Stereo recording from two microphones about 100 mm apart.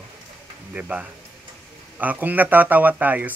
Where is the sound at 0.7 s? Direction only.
15° right (ahead or behind).